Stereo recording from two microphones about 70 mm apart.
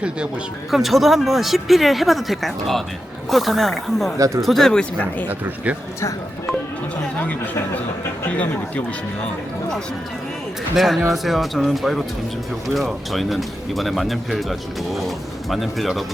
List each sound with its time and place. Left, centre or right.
0.7 s speech: centre
4.9 s speech: left
10.8 s speech: centre
15.4 s speech: centre